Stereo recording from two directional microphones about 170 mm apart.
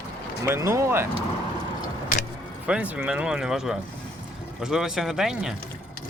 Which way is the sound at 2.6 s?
10° right (ahead or behind).